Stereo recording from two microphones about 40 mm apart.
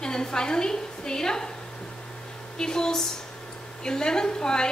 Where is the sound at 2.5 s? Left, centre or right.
Centre.